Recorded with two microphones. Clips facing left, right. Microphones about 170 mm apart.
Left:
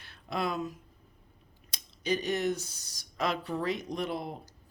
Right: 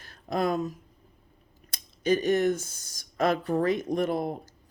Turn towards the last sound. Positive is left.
turn(degrees=-50)  # may be behind; listen again after turning